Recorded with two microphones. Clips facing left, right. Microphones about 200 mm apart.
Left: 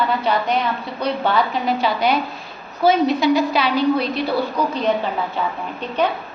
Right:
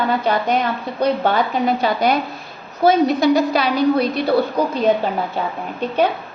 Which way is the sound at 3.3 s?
45° right (ahead or behind).